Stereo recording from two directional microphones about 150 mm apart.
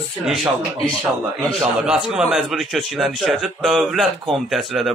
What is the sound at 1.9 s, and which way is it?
A man's voice, 5° right (ahead or behind).